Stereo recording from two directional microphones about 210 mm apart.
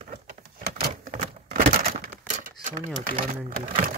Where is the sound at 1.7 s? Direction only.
45° right (ahead or behind).